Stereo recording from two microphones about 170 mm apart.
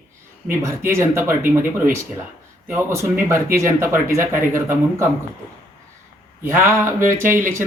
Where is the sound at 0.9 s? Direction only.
15° right (ahead or behind).